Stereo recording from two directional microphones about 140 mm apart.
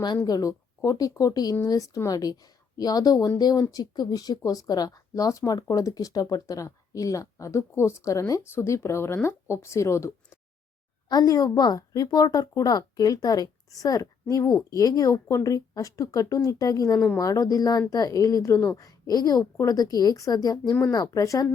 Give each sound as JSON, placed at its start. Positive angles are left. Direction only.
{"t": 0.3, "sound": "a woman's voice", "side_deg": 25}